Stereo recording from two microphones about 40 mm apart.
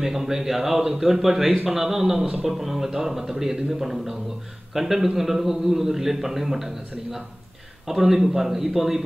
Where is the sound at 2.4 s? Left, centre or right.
Centre.